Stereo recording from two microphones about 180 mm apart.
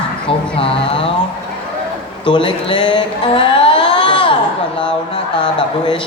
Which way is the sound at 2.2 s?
25° left (ahead or behind).